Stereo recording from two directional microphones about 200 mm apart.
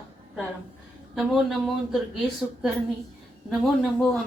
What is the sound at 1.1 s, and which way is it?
Speech, centre (ahead or behind).